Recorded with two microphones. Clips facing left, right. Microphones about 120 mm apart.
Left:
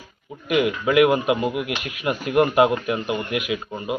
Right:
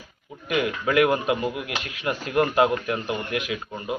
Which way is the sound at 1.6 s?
30° right (ahead or behind).